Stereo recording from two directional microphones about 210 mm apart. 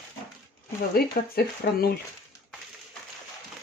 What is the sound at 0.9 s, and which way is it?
Speech, 45° left (ahead or behind).